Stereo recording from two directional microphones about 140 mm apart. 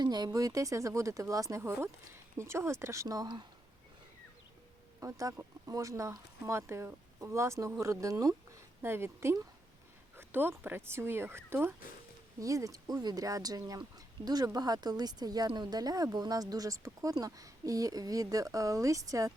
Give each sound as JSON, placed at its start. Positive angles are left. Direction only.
{"t": 0.0, "sound": "speech", "side_deg": -30}
{"t": 4.9, "sound": "speech", "side_deg": -20}